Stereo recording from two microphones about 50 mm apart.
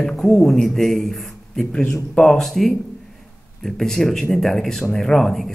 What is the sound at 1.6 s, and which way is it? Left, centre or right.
Speech, centre.